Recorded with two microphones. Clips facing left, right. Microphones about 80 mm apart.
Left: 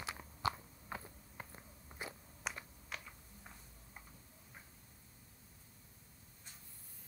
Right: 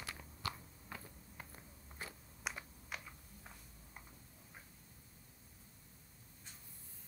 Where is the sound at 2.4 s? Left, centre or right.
Centre.